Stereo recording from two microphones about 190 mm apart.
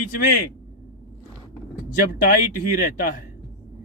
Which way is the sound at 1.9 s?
45° left (ahead or behind).